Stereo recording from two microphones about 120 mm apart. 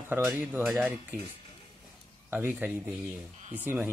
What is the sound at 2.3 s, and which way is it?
Speech, 15° right (ahead or behind).